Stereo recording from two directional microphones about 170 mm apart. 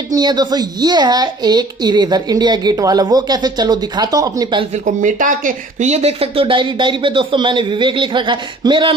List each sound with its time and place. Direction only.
0.1 s speech: 25° right (ahead or behind)
4.8 s speech: 50° right (ahead or behind); by 8.9 s 30° right (ahead or behind)